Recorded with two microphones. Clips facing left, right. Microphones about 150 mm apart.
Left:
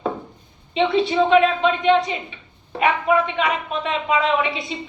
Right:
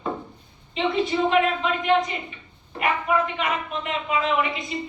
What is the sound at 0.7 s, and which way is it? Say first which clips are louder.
A man's voice: left 4 dB; 90° left.